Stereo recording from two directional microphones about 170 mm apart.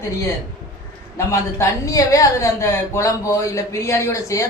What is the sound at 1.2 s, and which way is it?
A woman's voice, 20° left (ahead or behind).